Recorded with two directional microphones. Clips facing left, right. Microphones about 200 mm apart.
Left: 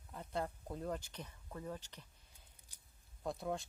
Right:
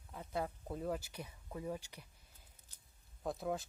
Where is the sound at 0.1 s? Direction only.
5° right (ahead or behind).